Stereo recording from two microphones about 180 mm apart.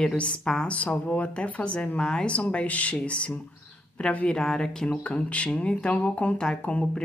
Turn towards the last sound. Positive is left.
turn(degrees=5)  # may be behind; listen again after turning